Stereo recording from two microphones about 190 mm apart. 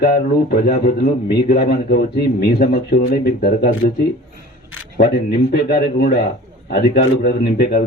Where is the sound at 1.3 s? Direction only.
55° left (ahead or behind).